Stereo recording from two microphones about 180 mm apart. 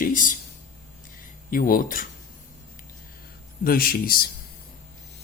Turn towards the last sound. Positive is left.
turn(degrees=55)  # may be behind; listen again after turning